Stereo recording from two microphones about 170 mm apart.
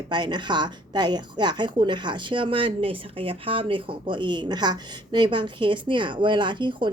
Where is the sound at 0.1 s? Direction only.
25° right (ahead or behind).